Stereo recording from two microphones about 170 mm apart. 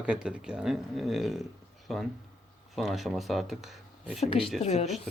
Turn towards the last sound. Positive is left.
turn(degrees=40)  # may be behind; listen again after turning